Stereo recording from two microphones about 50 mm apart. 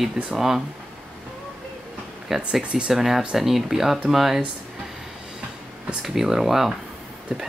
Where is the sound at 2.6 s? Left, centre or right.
Centre.